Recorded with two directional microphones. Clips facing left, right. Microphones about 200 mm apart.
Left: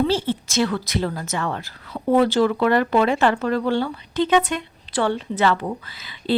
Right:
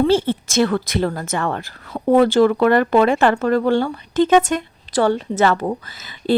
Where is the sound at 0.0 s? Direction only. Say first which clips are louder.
Right 5 dB; 55° right (ahead or behind).